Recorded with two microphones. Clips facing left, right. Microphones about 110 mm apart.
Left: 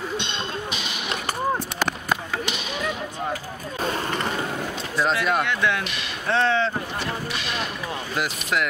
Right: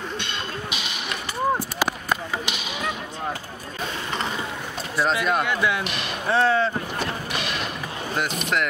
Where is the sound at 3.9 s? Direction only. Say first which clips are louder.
Right 1 dB; 50° left (ahead or behind).